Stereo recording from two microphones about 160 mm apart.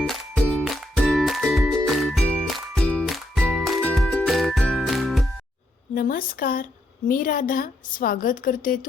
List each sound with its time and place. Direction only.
0.0 s music: 5° left (ahead or behind)
5.9 s a woman's voice: 65° left (ahead or behind)